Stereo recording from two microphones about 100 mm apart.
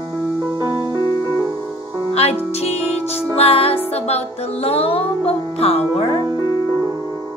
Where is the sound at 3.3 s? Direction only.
75° left (ahead or behind).